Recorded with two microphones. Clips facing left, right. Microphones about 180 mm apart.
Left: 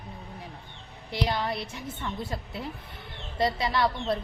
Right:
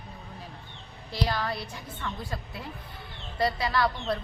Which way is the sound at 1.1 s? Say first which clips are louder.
Left 1 dB; 20° left (ahead or behind).